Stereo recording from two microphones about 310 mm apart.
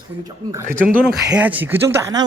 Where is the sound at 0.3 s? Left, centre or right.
Centre.